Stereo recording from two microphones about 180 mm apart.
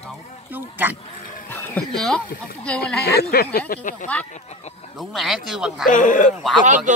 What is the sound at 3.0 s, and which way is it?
Speech, 60° left (ahead or behind).